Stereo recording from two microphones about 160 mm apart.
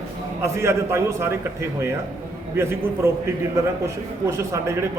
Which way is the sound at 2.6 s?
15° right (ahead or behind).